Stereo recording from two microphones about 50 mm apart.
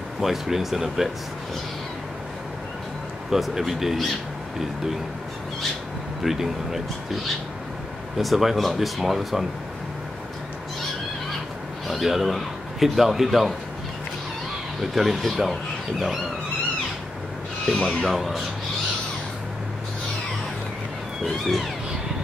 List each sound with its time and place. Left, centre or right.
0.2 s speech: centre
3.3 s speech: centre
6.2 s speech: centre
11.9 s speech: centre
14.8 s speech: centre
17.7 s speech: centre
18.1 s speech: centre